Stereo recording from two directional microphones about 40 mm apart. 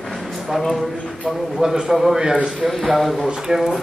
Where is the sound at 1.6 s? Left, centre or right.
Centre.